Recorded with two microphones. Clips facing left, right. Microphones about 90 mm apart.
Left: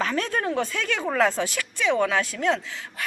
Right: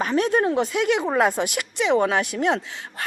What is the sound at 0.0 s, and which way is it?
Speech, 20° right (ahead or behind).